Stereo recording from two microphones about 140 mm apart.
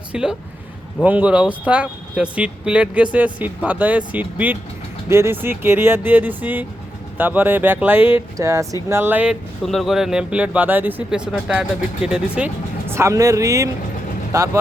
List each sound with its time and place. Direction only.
0.1 s speech: 5° right (ahead or behind)
12.9 s speech: 20° right (ahead or behind)